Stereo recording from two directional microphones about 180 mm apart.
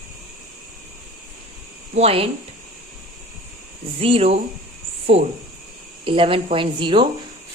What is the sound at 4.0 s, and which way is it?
Speech, 30° right (ahead or behind).